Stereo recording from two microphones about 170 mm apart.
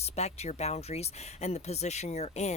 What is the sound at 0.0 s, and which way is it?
Speech, 40° left (ahead or behind).